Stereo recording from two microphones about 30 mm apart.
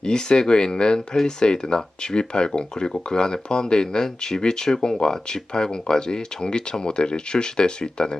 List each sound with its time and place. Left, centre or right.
0.0 s speech: left